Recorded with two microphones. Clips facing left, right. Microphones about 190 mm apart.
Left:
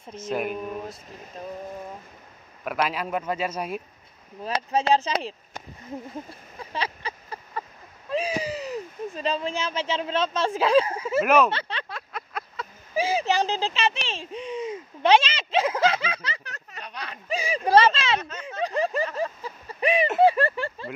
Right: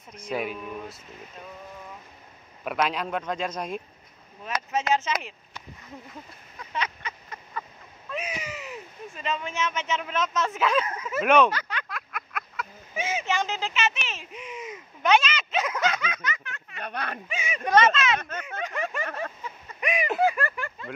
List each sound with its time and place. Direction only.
0.1 s speech: centre (ahead or behind)
1.4 s speech: 35° left (ahead or behind)
2.6 s speech: centre (ahead or behind)
4.5 s speech: 30° left (ahead or behind)
6.6 s a sound: 30° left (ahead or behind)
8.1 s speech: 30° left (ahead or behind)
11.2 s speech: 5° left (ahead or behind)
11.5 s speech: 30° left (ahead or behind)
16.8 s speech: 55° right (ahead or behind)
17.3 s speech: 35° left (ahead or behind)
18.4 s a sound: 35° left (ahead or behind)
20.2 s speech: 30° left (ahead or behind)